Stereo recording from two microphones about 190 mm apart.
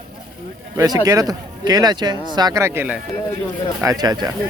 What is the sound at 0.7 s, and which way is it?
Speech, 20° right (ahead or behind).